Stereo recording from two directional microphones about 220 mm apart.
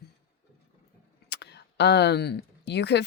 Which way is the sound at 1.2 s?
50° left (ahead or behind).